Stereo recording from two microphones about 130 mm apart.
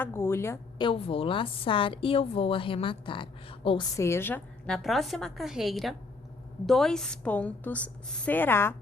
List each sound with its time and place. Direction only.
0.0 s a woman's voice: 20° left (ahead or behind)
0.8 s a woman's voice: 45° left (ahead or behind)
3.9 s a woman's voice: 20° left (ahead or behind)